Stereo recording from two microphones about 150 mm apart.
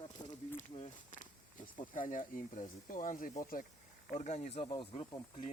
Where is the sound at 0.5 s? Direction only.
50° left (ahead or behind).